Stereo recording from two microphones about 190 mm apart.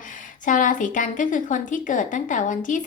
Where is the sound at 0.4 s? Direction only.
45° left (ahead or behind).